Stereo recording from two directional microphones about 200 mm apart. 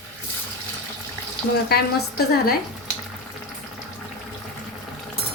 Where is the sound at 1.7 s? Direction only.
50° left (ahead or behind).